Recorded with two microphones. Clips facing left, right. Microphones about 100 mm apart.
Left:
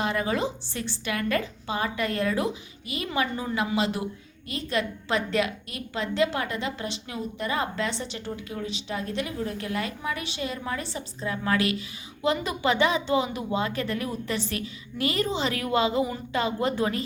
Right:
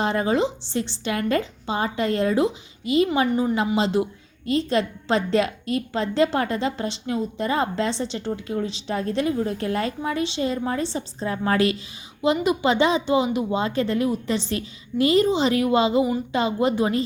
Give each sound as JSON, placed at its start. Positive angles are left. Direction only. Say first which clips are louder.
{"t": 0.0, "sound": "a woman's voice", "louder": "right 5 dB", "side_deg": -30}
{"t": 12.2, "sound": "a woman's voice", "louder": "right 5 dB", "side_deg": -20}